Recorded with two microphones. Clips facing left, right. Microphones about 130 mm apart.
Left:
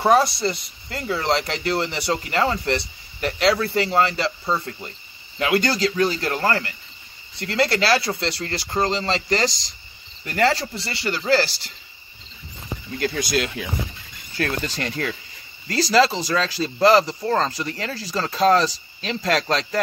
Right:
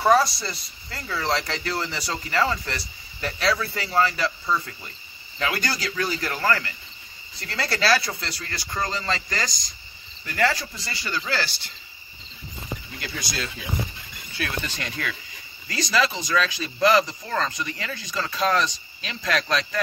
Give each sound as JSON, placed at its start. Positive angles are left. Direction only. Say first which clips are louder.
{"t": 0.0, "sound": "speech", "louder": "left 2 dB", "side_deg": 25}
{"t": 13.0, "sound": "speech", "louder": "left 11 dB", "side_deg": 55}
{"t": 14.3, "sound": "speech", "louder": "left 5 dB", "side_deg": 40}